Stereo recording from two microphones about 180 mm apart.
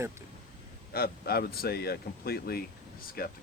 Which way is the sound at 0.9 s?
60° left (ahead or behind).